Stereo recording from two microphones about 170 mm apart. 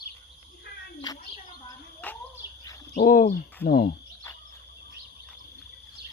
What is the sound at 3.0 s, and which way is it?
Speech, 55° left (ahead or behind).